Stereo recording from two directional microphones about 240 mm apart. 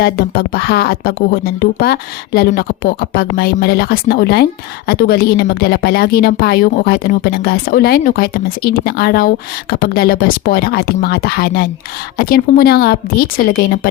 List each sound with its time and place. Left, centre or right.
0.0 s a woman's voice: left